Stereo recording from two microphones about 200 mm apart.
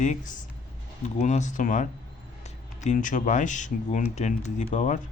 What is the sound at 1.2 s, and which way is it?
Speech, 35° left (ahead or behind).